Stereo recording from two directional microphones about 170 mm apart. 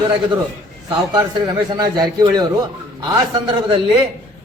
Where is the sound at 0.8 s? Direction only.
30° right (ahead or behind).